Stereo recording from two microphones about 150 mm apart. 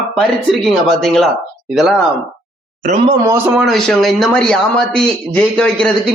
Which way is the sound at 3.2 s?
15° right (ahead or behind).